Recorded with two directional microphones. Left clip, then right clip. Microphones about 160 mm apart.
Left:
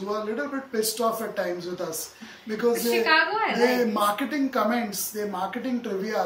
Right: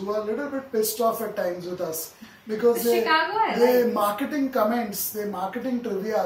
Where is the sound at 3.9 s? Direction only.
5° right (ahead or behind).